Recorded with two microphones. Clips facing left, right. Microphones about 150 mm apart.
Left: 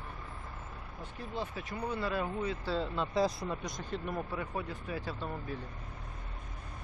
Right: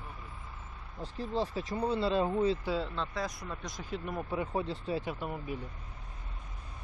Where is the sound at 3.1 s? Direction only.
25° left (ahead or behind).